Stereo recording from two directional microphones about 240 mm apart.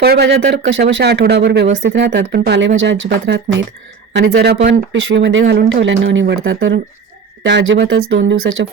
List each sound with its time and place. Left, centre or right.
0.0 s speech: right